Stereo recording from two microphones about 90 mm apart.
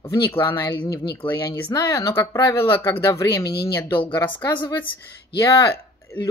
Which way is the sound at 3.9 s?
60° left (ahead or behind).